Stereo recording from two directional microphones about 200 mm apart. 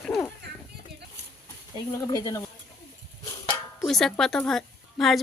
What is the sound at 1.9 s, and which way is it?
Speech, 15° left (ahead or behind).